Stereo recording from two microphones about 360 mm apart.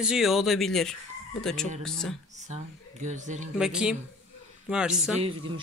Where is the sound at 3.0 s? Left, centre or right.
Centre.